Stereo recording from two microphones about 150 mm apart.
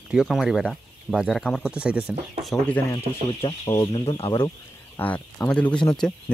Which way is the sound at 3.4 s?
25° left (ahead or behind).